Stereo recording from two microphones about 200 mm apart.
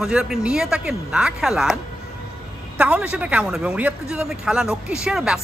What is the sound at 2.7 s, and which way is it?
Speech, 5° right (ahead or behind).